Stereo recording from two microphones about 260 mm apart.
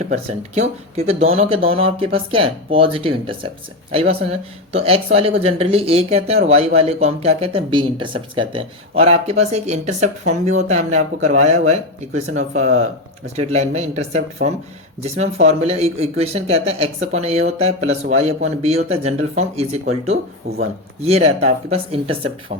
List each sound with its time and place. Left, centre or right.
0.1 s speech: right
21.0 s speech: right